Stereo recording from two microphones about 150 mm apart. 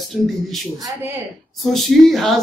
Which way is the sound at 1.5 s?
Centre (ahead or behind).